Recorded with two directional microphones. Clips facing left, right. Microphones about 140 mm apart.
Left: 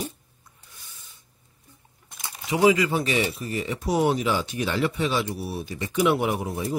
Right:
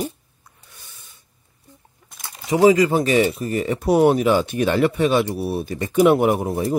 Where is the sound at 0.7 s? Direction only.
65° right (ahead or behind).